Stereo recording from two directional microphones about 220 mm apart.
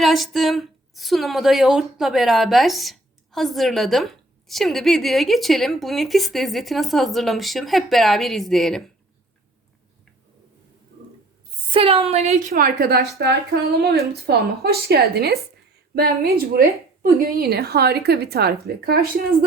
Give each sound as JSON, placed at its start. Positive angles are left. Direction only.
{"t": 0.0, "sound": "a woman's voice", "side_deg": 0}
{"t": 11.7, "sound": "a woman's voice", "side_deg": -25}
{"t": 12.5, "sound": "a woman's voice", "side_deg": -45}